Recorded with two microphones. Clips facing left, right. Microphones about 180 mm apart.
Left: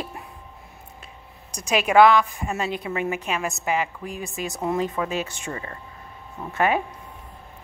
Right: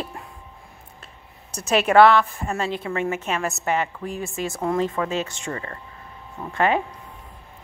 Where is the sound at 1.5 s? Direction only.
10° left (ahead or behind).